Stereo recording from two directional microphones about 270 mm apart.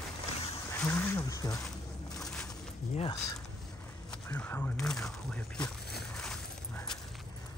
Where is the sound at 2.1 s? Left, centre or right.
Centre.